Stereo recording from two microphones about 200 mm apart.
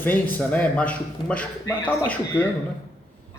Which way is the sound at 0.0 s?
10° left (ahead or behind).